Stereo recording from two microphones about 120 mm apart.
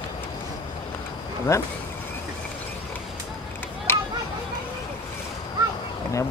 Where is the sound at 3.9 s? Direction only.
20° left (ahead or behind).